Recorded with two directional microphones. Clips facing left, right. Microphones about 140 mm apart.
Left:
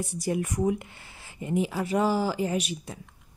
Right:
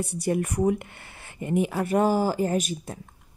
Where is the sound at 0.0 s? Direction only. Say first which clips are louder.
Right 3 dB; 60° right (ahead or behind).